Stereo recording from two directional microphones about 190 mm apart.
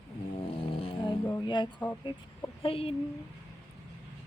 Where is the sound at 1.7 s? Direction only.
10° left (ahead or behind).